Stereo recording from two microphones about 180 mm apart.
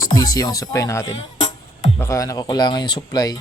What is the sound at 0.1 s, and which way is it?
Speech, 20° left (ahead or behind).